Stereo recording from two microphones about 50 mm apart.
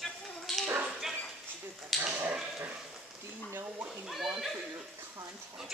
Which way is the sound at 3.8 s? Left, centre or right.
Centre.